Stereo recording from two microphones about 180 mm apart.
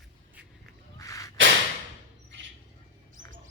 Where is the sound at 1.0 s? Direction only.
20° left (ahead or behind).